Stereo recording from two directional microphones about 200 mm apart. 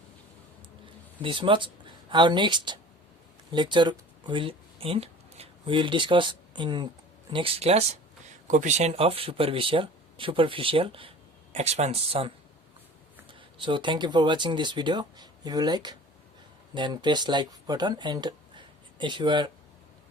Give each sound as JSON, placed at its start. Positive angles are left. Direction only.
{"t": 1.2, "sound": "speech", "side_deg": -25}
{"t": 13.6, "sound": "speech", "side_deg": -25}